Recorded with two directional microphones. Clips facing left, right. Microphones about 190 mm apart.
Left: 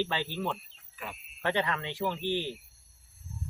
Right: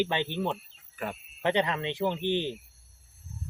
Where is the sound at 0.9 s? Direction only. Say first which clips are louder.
Right 7 dB; 50° right (ahead or behind).